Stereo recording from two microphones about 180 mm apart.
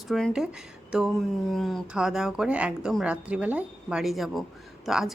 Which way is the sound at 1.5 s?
Centre (ahead or behind).